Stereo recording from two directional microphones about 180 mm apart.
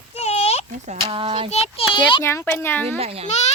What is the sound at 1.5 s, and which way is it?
Speech, 35° left (ahead or behind).